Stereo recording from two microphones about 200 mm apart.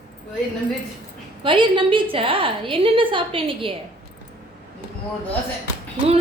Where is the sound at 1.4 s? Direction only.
25° right (ahead or behind).